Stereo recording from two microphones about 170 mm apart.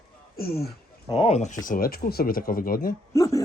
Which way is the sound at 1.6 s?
55° left (ahead or behind).